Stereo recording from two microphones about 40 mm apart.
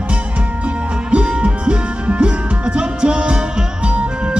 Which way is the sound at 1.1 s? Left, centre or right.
Right.